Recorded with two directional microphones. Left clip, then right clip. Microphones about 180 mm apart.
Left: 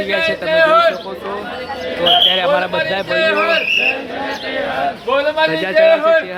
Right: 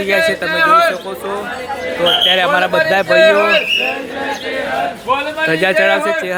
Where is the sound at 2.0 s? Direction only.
5° right (ahead or behind).